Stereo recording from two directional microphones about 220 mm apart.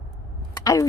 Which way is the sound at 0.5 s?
15° left (ahead or behind).